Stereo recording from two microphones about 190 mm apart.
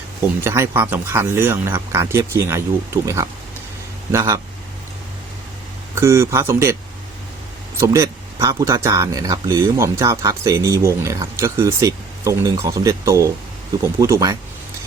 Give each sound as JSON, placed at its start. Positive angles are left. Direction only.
{"t": 0.4, "sound": "speech", "side_deg": -15}
{"t": 5.9, "sound": "speech", "side_deg": -15}
{"t": 7.8, "sound": "speech", "side_deg": -15}